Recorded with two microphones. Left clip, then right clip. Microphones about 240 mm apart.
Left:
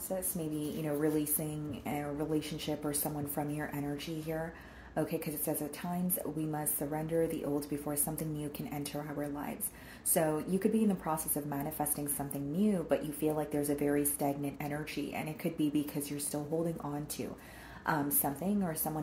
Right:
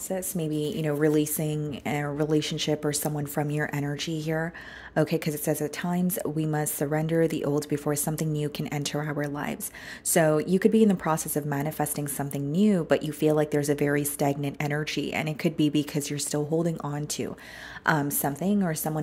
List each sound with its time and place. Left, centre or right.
0.8 s speech: right
17.8 s a woman's voice: right